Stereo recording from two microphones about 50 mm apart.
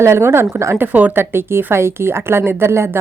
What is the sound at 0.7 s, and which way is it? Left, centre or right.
Speech, right.